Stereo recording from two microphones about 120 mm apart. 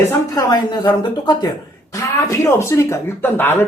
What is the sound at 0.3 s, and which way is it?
A woman's voice, 30° left (ahead or behind).